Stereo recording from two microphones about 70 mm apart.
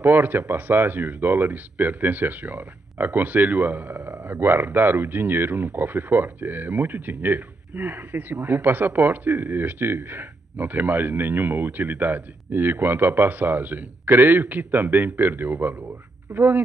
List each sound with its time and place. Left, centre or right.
0.0 s speech: right